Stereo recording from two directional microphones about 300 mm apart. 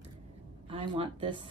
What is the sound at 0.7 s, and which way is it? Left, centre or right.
Speech, centre.